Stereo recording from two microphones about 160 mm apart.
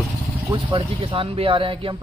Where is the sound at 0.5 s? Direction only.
30° right (ahead or behind).